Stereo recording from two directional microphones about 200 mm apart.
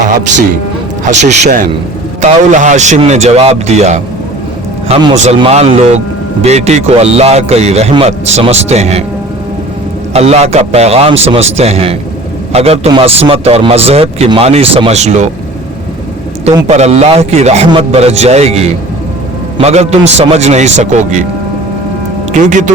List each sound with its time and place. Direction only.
1.1 s speech: 35° right (ahead or behind)
10.1 s speech: 30° right (ahead or behind)
16.6 s speech: 35° right (ahead or behind)
22.3 s speech: 40° right (ahead or behind)